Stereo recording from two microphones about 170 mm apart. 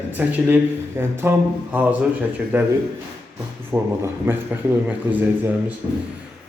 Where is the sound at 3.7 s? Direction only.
15° right (ahead or behind).